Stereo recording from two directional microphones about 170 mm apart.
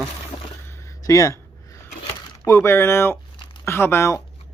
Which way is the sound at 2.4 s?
15° left (ahead or behind).